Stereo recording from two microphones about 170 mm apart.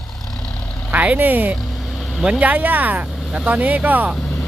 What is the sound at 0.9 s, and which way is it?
Speech, 10° right (ahead or behind).